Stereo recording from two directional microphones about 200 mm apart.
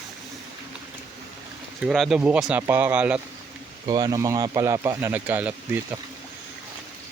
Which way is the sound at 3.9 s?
20° right (ahead or behind).